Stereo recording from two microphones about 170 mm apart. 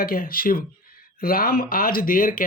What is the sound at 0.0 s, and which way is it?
Speech, 55° left (ahead or behind).